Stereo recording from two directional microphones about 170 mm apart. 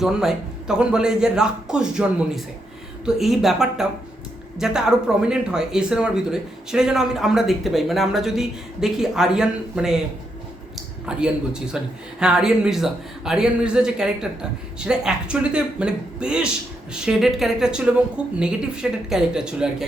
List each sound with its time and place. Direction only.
0.0 s speech: centre (ahead or behind)
11.0 s speech: 5° right (ahead or behind)